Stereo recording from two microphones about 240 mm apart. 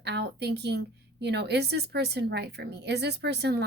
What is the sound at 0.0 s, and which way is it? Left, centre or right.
A woman's voice, right.